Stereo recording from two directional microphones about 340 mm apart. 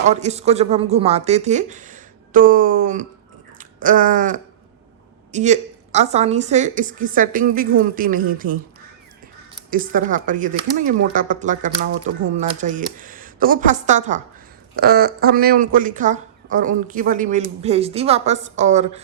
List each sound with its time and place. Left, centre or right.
0.0 s speech: centre
3.6 s a sound: right
5.3 s speech: centre
9.6 s speech: right